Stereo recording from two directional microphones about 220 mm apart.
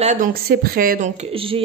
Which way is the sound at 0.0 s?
35° right (ahead or behind).